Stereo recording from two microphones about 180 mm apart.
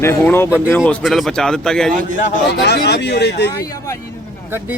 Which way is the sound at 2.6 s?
70° left (ahead or behind).